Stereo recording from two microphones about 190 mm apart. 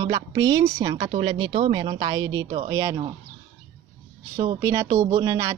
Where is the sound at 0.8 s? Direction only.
30° right (ahead or behind).